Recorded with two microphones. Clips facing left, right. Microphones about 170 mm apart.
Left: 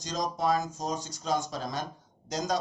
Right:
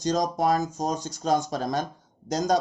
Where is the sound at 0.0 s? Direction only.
45° right (ahead or behind).